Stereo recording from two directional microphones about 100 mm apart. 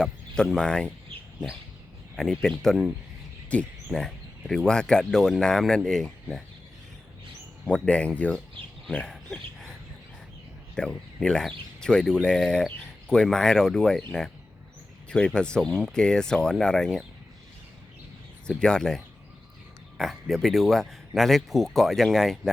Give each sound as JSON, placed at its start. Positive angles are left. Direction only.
{"t": 0.0, "sound": "speech", "side_deg": 5}
{"t": 2.1, "sound": "speech", "side_deg": 5}
{"t": 7.6, "sound": "speech", "side_deg": 10}
{"t": 8.6, "sound": "speech", "side_deg": -65}
{"t": 8.9, "sound": "speech", "side_deg": 10}
{"t": 10.8, "sound": "speech", "side_deg": 10}
{"t": 15.1, "sound": "speech", "side_deg": 10}
{"t": 18.4, "sound": "speech", "side_deg": 10}